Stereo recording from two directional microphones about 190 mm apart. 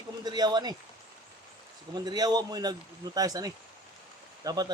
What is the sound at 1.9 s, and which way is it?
Speech, 20° right (ahead or behind).